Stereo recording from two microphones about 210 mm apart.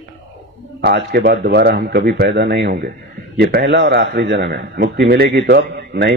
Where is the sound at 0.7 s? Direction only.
55° right (ahead or behind).